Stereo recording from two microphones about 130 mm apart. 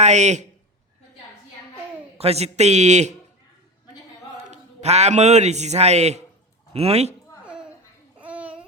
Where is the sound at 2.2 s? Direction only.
50° right (ahead or behind).